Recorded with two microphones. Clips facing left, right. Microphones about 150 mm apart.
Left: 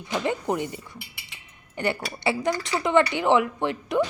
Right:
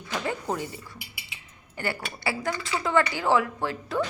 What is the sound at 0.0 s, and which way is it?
A woman's voice, 20° left (ahead or behind).